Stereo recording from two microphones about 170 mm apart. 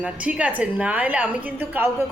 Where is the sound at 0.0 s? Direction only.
5° right (ahead or behind).